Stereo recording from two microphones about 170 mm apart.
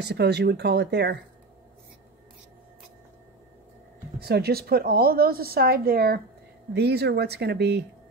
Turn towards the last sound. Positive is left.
turn(degrees=-80)